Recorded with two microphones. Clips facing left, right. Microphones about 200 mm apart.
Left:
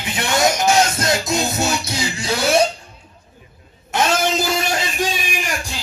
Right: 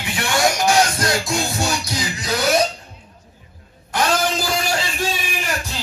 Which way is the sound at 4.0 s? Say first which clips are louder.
Left 1 dB; 25° left (ahead or behind).